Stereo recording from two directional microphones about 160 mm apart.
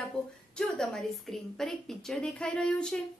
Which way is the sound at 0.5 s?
5° left (ahead or behind).